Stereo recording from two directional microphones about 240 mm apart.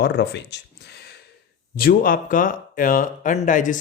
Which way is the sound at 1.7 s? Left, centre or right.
Left.